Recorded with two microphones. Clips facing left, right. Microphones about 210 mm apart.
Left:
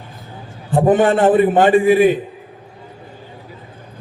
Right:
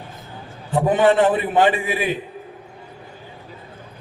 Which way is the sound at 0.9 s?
45° left (ahead or behind).